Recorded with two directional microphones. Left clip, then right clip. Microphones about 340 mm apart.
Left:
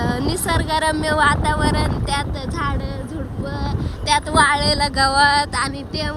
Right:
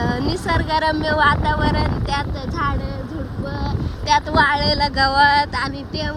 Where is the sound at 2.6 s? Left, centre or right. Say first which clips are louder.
Right 2 dB; centre.